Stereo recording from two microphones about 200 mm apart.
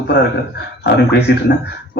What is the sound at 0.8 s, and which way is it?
Speech, 55° left (ahead or behind).